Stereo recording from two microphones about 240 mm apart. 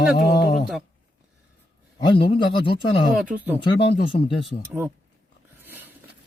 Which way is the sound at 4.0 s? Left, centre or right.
Left.